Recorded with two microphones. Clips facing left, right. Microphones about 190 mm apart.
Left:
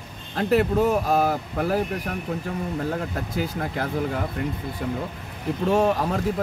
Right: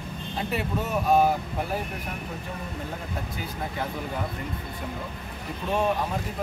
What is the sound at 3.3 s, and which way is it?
Speech, 90° left.